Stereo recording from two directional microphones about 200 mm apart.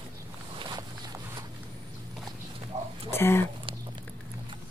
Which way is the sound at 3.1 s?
10° left (ahead or behind).